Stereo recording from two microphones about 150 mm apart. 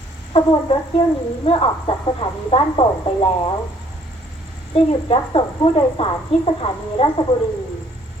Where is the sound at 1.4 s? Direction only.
35° left (ahead or behind).